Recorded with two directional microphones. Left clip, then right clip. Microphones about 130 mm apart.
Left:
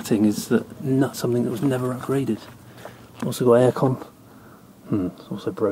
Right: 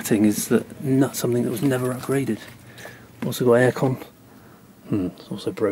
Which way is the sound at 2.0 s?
35° right (ahead or behind).